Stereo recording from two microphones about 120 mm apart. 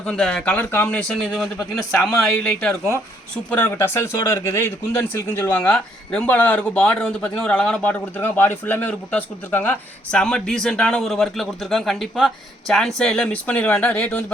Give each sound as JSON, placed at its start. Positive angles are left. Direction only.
{"t": 0.0, "sound": "speech", "side_deg": 5}
{"t": 5.6, "sound": "speech", "side_deg": 10}